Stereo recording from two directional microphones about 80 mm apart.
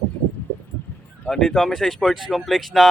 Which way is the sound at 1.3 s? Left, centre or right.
Centre.